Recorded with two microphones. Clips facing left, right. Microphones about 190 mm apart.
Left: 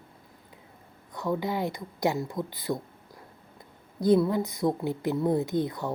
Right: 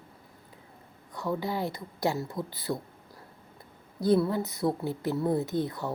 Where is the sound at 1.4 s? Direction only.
20° left (ahead or behind).